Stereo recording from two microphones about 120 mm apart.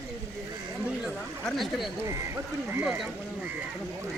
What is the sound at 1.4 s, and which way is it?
Speech, centre (ahead or behind).